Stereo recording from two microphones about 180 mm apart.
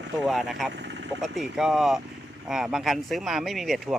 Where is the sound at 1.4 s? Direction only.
Centre (ahead or behind).